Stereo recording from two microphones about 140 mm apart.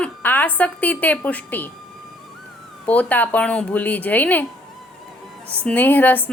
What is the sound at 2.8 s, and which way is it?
A woman's voice, 10° left (ahead or behind).